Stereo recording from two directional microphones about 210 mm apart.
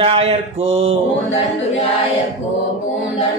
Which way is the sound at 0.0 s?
25° right (ahead or behind).